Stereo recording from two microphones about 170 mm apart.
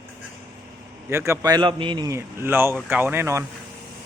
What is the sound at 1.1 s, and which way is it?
A man's voice, 15° right (ahead or behind).